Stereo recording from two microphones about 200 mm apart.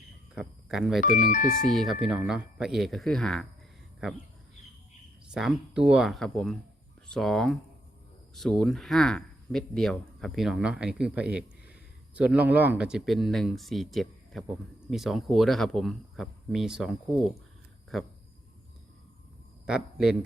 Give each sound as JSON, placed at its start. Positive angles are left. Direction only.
{"t": 0.3, "sound": "speech", "side_deg": -5}
{"t": 1.3, "sound": "speech", "side_deg": 40}
{"t": 1.7, "sound": "speech", "side_deg": 0}
{"t": 5.3, "sound": "speech", "side_deg": 0}
{"t": 19.6, "sound": "speech", "side_deg": -5}